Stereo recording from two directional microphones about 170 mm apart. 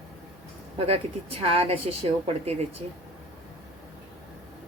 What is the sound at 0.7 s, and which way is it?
A woman's voice, 35° right (ahead or behind).